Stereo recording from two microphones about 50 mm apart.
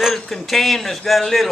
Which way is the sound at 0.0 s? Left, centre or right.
Centre.